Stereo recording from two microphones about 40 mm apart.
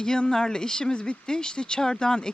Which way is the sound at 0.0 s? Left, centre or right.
Centre.